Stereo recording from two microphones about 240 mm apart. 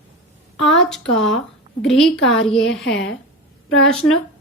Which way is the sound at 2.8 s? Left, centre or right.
Left.